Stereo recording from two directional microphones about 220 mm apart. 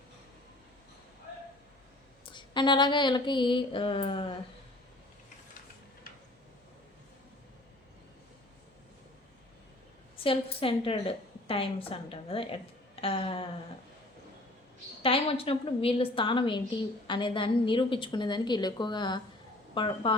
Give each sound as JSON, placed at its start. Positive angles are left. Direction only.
{"t": 2.2, "sound": "a woman's voice", "side_deg": 20}
{"t": 10.2, "sound": "a woman's voice", "side_deg": 25}
{"t": 15.0, "sound": "a woman's voice", "side_deg": 25}